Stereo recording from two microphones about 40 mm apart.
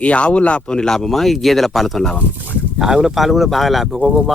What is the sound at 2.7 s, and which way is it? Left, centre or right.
Speech, centre.